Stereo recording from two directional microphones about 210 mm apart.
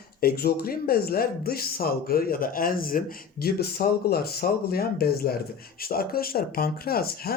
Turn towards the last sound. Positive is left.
turn(degrees=45)  # may be behind; listen again after turning